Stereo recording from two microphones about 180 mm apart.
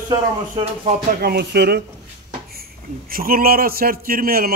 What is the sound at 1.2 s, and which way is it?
A man's voice, 65° right (ahead or behind).